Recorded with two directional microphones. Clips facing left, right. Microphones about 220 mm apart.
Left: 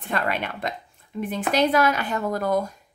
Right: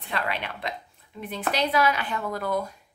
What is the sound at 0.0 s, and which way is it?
Speech, 45° left (ahead or behind).